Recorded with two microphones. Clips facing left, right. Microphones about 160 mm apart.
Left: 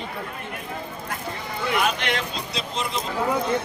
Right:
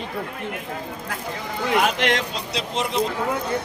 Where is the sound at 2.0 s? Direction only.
85° right.